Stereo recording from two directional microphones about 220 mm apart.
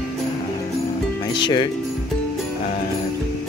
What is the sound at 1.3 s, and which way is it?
Speech, 20° left (ahead or behind).